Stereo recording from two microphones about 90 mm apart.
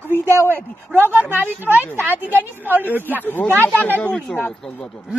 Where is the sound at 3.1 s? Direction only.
20° left (ahead or behind).